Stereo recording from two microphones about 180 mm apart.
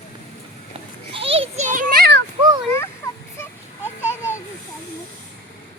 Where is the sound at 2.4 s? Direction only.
25° right (ahead or behind).